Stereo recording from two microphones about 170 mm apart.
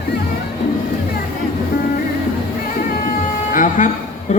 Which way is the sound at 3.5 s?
50° left (ahead or behind).